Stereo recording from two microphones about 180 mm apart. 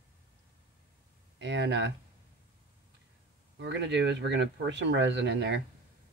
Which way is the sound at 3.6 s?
80° right.